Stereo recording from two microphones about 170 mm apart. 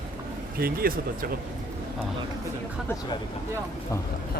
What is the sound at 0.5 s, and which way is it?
Speech, 60° right (ahead or behind).